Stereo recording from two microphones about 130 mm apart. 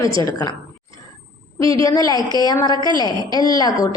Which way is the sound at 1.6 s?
25° left (ahead or behind).